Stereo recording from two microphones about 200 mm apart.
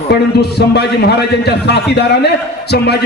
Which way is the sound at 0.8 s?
55° left (ahead or behind).